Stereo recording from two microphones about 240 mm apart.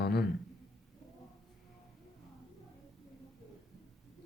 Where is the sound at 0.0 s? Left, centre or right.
Left.